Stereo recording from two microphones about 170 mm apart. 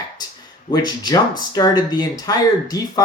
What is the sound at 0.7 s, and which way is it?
Speech, 25° left (ahead or behind).